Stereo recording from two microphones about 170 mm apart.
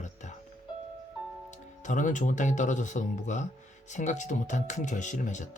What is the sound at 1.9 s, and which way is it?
Speech, 50° left (ahead or behind).